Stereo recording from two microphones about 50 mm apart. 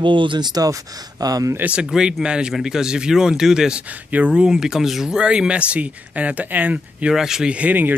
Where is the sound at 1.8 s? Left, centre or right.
Centre.